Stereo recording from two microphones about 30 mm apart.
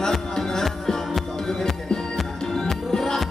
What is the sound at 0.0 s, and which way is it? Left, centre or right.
Music, left.